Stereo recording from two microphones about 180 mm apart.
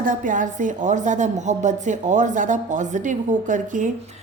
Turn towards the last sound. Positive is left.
turn(degrees=-45)  # may be behind; listen again after turning